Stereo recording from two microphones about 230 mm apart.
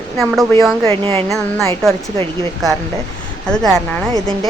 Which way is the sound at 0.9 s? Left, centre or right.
Right.